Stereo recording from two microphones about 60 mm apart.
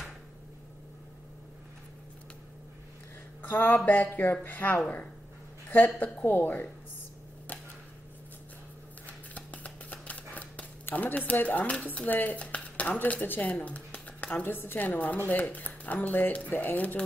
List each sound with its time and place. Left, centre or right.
3.4 s speech: left
6.2 s speech: left
9.0 s a sound: left
11.8 s speech: left